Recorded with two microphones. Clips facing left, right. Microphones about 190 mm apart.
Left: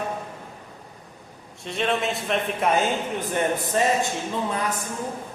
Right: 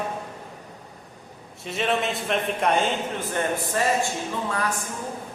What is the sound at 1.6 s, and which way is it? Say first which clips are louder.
Speech: even; centre (ahead or behind).